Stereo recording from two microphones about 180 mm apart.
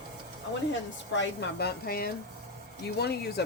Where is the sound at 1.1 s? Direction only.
85° left.